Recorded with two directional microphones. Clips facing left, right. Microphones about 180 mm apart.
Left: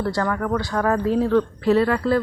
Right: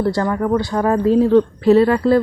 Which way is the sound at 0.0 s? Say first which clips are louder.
Right 5 dB; 25° right (ahead or behind).